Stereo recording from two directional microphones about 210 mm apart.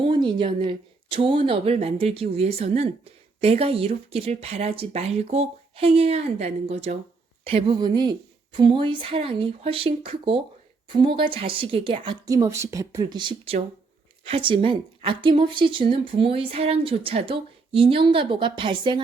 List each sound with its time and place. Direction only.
0.0 s a woman's voice: 20° right (ahead or behind)